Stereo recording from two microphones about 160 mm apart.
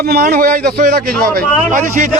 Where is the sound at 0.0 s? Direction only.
75° right (ahead or behind).